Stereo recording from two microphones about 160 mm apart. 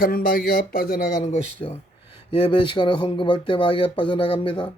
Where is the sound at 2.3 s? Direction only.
30° left (ahead or behind).